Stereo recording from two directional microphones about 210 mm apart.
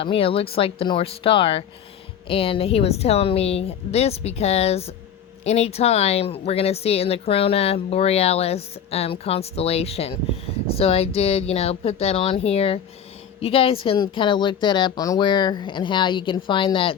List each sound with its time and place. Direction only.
0.0 s speech: 25° left (ahead or behind)